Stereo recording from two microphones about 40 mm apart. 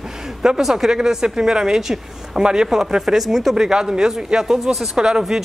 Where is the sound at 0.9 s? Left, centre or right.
Centre.